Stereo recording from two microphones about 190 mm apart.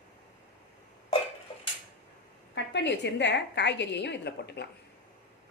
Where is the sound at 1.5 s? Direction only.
30° left (ahead or behind).